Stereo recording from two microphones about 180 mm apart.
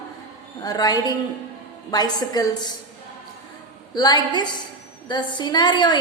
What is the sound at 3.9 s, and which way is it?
A woman's voice, 25° left (ahead or behind).